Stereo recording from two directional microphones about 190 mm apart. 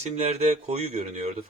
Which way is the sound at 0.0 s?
35° right (ahead or behind).